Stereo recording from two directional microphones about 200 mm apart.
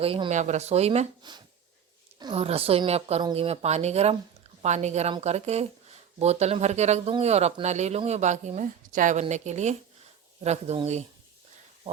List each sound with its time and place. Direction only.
0.0 s speech: 30° right (ahead or behind)